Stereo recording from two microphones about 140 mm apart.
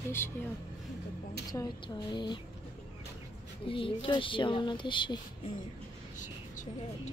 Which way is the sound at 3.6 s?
40° left (ahead or behind).